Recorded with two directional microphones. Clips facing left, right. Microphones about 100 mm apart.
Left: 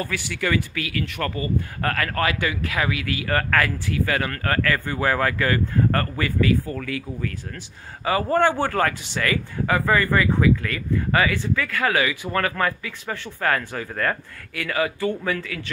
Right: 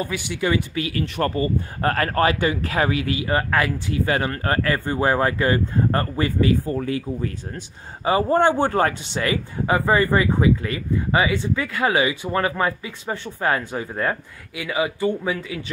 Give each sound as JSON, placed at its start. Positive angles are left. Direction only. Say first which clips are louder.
{"t": 0.0, "sound": "speech", "louder": "right 2 dB", "side_deg": -15}